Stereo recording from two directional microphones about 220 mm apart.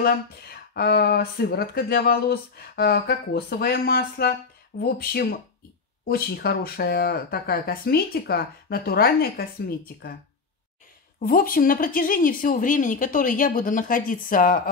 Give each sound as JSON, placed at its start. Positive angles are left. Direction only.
{"t": 0.0, "sound": "speech", "side_deg": 45}
{"t": 11.1, "sound": "a woman's voice", "side_deg": 40}